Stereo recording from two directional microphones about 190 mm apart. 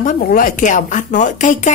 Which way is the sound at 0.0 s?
45° left (ahead or behind).